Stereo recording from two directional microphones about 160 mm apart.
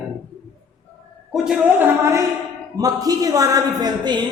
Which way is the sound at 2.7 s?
25° right (ahead or behind).